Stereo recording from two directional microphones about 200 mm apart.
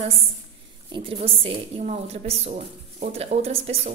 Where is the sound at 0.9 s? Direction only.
25° right (ahead or behind).